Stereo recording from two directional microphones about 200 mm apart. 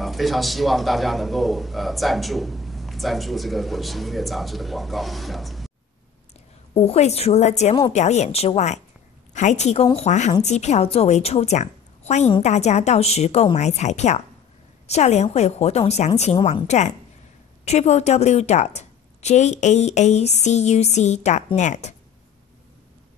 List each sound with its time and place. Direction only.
0.0 s a man's voice: centre (ahead or behind)
6.7 s a woman's voice: 30° left (ahead or behind)